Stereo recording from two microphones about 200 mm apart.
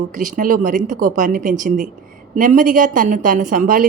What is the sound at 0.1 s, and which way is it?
A woman's voice, 40° right (ahead or behind).